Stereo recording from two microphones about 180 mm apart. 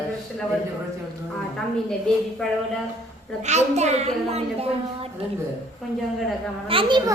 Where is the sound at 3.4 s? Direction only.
40° right (ahead or behind).